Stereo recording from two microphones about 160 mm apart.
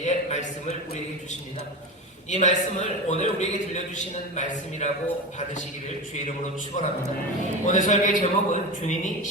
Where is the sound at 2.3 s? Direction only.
45° left (ahead or behind).